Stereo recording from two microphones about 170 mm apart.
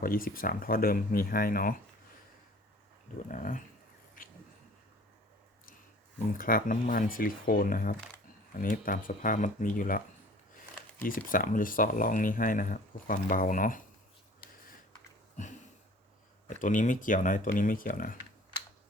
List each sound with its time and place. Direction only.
0.0 s speech: 55° left (ahead or behind)
3.2 s speech: 50° left (ahead or behind)
4.2 s a sound: 55° left (ahead or behind)
6.3 s speech: 55° left (ahead or behind)
11.0 s speech: 55° left (ahead or behind)
16.5 s speech: 50° left (ahead or behind)